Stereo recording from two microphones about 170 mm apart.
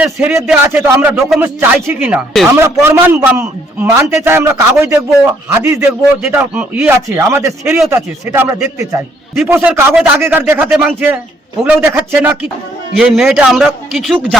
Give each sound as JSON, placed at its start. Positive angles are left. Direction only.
{"t": 0.0, "sound": "speech", "side_deg": -10}
{"t": 1.2, "sound": "a man's voice", "side_deg": 0}